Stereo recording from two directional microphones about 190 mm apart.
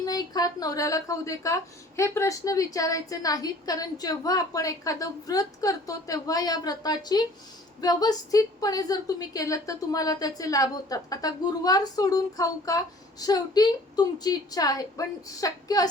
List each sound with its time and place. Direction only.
0.0 s a woman's voice: 20° left (ahead or behind)